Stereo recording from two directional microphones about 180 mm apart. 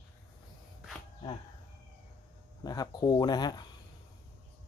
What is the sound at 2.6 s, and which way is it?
Speech, 20° left (ahead or behind).